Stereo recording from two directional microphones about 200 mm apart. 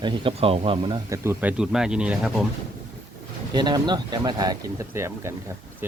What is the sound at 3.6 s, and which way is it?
Speech, 20° right (ahead or behind).